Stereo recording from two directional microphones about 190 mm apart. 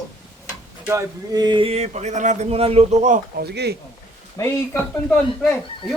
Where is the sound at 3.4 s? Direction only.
60° right (ahead or behind).